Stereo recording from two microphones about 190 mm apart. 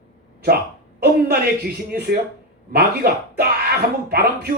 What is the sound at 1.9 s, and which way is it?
A man's voice, 55° right (ahead or behind).